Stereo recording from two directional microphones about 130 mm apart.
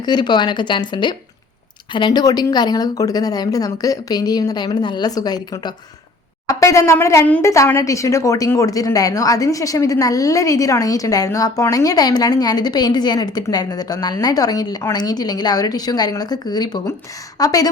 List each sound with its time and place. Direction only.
0.0 s a woman's voice: 35° left (ahead or behind)